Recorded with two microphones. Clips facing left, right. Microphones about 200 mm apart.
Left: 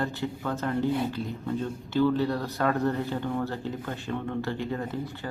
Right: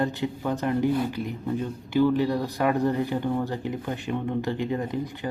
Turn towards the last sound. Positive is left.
turn(degrees=-15)  # may be behind; listen again after turning